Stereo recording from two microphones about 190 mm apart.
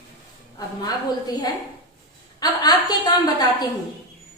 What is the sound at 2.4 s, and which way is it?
A woman's voice, 20° left (ahead or behind).